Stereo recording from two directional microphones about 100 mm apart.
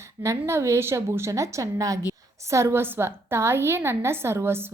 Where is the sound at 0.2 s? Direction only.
30° right (ahead or behind).